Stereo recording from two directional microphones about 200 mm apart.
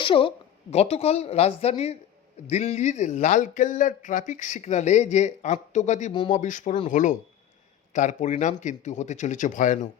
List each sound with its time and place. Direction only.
0.0 s speech: 25° left (ahead or behind)